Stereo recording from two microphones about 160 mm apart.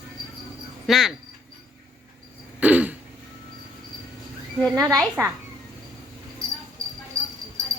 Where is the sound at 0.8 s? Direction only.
Centre (ahead or behind).